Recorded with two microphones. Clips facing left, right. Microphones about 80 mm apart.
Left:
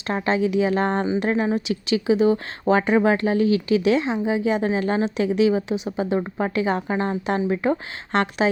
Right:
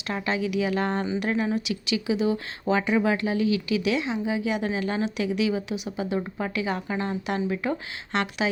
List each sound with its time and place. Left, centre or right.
0.1 s speech: left